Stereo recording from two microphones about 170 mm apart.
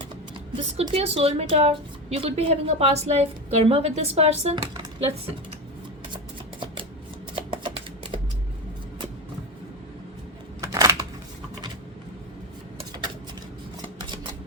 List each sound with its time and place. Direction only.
0.5 s a woman's voice: 35° right (ahead or behind)
7.3 s typewriter: 35° right (ahead or behind)
10.6 s a sound: 20° right (ahead or behind)